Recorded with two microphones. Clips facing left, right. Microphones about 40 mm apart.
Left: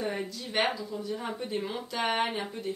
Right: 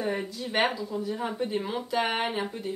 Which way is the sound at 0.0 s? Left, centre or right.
Centre.